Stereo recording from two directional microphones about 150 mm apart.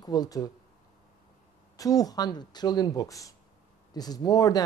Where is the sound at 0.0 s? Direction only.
25° left (ahead or behind).